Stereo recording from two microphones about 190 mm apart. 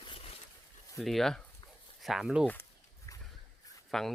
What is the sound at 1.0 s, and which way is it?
Speech, centre (ahead or behind).